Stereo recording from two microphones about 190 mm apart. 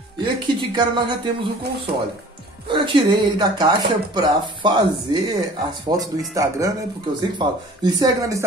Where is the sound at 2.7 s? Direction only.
25° right (ahead or behind).